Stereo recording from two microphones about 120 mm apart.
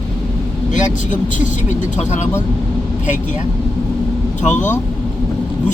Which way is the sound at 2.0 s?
75° left (ahead or behind).